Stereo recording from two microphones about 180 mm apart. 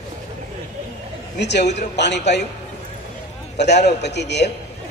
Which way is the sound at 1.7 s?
70° left (ahead or behind).